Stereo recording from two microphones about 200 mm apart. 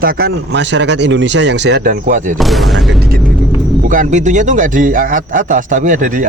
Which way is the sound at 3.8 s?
40° right (ahead or behind).